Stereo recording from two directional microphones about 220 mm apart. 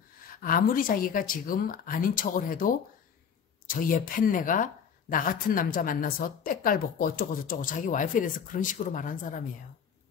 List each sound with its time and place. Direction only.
0.3 s a woman's voice: 40° left (ahead or behind)